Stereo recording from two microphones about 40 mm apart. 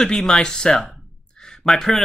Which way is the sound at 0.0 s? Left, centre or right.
Centre.